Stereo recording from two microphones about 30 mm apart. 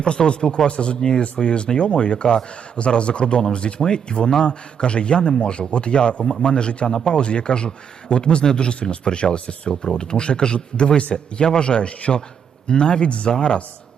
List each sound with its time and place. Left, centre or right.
0.0 s speech: left
0.7 s speech: left
6.7 s speech: left
6.9 s speech: centre
7.2 s speech: left